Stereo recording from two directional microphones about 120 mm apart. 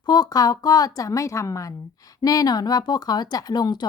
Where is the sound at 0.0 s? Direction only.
35° left (ahead or behind).